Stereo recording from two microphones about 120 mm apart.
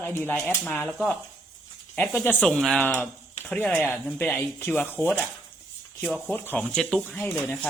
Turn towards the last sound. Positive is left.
turn(degrees=15)  # may be behind; listen again after turning